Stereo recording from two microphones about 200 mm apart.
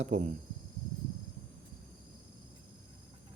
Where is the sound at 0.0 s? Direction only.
35° right (ahead or behind).